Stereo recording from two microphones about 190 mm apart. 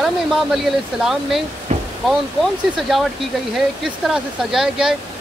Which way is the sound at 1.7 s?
35° right (ahead or behind).